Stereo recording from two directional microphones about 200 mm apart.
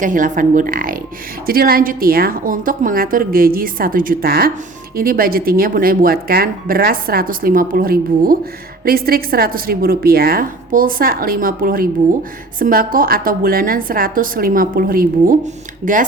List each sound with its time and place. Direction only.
0.0 s speech: 40° right (ahead or behind)